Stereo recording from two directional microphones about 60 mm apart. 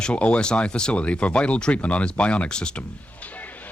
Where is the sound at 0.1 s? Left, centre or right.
Centre.